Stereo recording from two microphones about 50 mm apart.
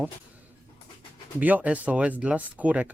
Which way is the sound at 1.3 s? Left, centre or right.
Right.